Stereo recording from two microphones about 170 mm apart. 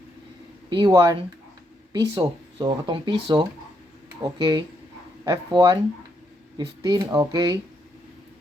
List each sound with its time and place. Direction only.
0.7 s speech: 25° right (ahead or behind)